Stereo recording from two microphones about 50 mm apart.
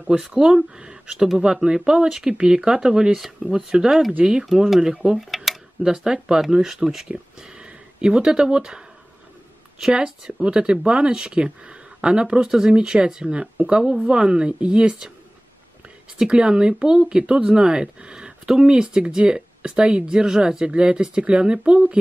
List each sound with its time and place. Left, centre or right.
1.4 s speech: centre
4.2 s speech: right
4.6 s speech: centre
5.2 s a sound: centre
5.8 s speech: centre
7.1 s speech: centre
12.4 s speech: centre
16.3 s speech: centre